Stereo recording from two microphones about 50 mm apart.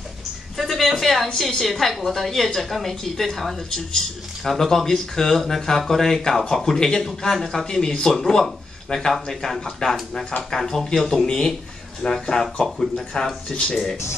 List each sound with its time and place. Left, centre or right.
0.6 s a woman's voice: centre